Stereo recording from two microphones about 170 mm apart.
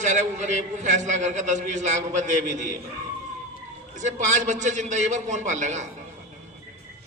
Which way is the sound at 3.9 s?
45° right (ahead or behind).